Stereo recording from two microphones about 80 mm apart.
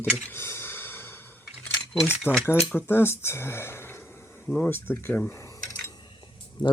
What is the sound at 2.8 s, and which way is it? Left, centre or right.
Speech, left.